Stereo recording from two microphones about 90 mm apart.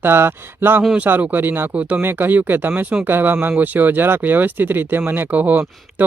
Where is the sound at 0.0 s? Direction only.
25° right (ahead or behind).